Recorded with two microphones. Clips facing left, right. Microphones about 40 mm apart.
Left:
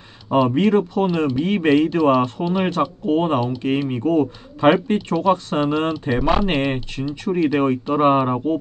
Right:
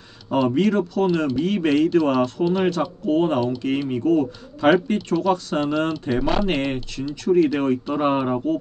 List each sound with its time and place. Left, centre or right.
0.4 s speech: centre
0.7 s speech: left